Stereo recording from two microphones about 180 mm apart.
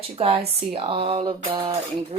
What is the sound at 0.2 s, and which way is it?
Speech, 30° right (ahead or behind).